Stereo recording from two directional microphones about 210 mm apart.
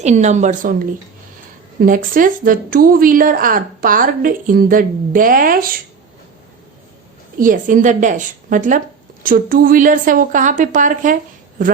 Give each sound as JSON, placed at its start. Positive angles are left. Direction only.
{"t": 0.0, "sound": "a woman's voice", "side_deg": -35}
{"t": 1.8, "sound": "a woman's voice", "side_deg": -40}
{"t": 7.3, "sound": "a woman's voice", "side_deg": -40}